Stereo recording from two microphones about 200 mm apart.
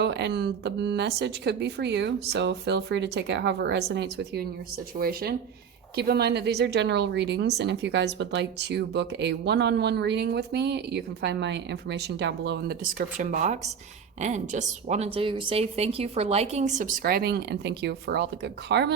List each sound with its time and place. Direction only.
0.0 s speech: 60° right (ahead or behind)